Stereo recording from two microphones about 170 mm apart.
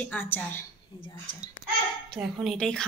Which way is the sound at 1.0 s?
30° left (ahead or behind).